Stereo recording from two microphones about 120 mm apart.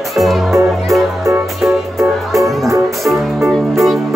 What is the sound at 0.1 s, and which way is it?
Speech, centre (ahead or behind).